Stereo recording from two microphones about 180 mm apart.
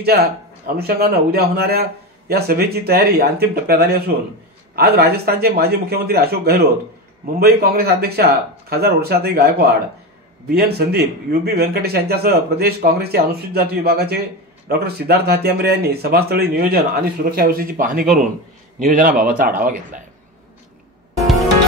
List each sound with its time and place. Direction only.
0.7 s a man's voice: 60° right (ahead or behind)